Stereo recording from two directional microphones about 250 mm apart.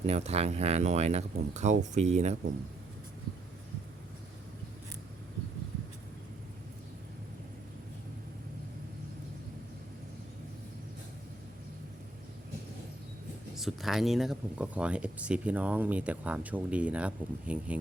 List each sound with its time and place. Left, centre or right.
0.0 s speech: right
13.6 s speech: centre